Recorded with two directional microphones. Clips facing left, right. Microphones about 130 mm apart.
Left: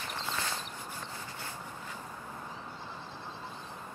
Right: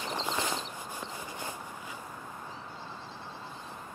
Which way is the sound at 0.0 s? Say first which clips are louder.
Right 4 dB; 15° right (ahead or behind).